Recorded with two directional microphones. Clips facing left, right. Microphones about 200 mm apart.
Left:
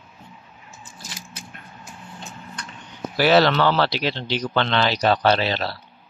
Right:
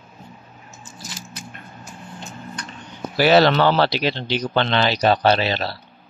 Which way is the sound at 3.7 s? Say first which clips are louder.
Right 2 dB; 20° right (ahead or behind).